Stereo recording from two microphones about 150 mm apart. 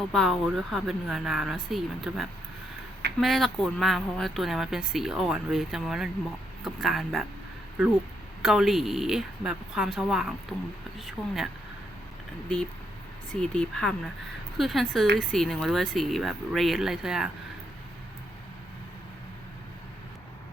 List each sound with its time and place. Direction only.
0.1 s speech: centre (ahead or behind)
8.4 s speech: centre (ahead or behind)
13.3 s speech: 5° left (ahead or behind)